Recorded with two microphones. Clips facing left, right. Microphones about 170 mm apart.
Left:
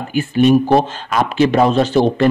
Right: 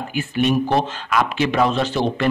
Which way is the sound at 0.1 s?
40° left (ahead or behind).